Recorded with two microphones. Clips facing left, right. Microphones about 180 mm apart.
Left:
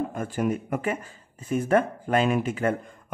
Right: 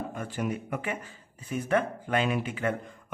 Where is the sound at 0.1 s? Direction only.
45° left (ahead or behind).